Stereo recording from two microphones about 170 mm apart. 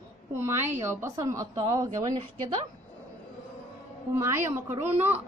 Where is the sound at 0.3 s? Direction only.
15° right (ahead or behind).